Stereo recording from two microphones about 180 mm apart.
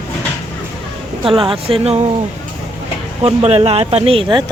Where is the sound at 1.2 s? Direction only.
30° right (ahead or behind).